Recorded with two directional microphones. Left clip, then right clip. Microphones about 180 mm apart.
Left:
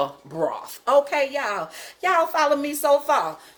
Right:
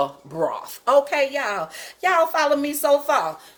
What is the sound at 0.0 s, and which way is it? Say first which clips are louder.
Speech: right 1 dB; centre (ahead or behind).